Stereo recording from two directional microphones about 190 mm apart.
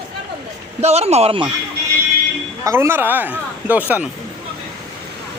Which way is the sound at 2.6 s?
15° right (ahead or behind).